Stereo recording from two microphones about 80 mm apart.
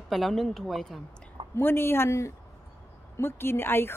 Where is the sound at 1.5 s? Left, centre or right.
Left.